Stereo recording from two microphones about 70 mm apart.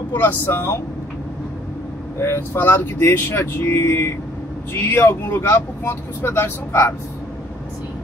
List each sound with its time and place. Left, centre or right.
0.1 s speech: left
2.1 s speech: left